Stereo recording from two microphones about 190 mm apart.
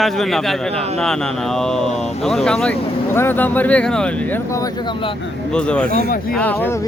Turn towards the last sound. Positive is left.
turn(degrees=15)  # may be behind; listen again after turning